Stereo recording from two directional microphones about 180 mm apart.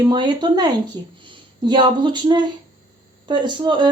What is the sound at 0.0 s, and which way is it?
Speech, 25° right (ahead or behind).